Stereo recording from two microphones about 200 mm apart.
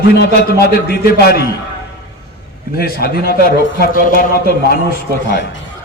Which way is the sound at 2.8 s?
50° left (ahead or behind).